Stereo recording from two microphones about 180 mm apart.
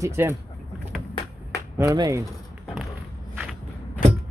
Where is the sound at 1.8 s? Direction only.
20° right (ahead or behind).